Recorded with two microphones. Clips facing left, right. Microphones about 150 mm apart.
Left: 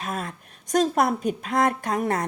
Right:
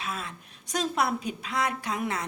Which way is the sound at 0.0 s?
45° left (ahead or behind).